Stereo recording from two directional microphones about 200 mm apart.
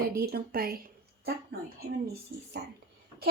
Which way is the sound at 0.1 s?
50° right (ahead or behind).